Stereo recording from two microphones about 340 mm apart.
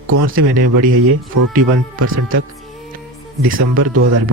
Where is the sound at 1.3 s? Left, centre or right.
Right.